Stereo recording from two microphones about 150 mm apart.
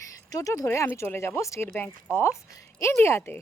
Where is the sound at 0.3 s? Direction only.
20° left (ahead or behind).